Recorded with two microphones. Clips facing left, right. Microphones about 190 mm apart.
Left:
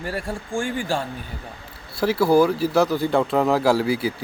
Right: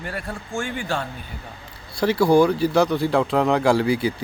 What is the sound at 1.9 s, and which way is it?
Speech, 5° left (ahead or behind).